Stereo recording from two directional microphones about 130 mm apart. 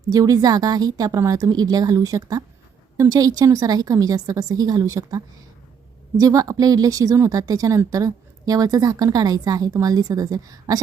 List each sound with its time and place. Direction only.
0.1 s speech: 30° right (ahead or behind)